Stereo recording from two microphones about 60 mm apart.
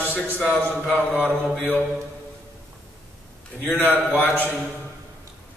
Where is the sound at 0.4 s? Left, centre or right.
Centre.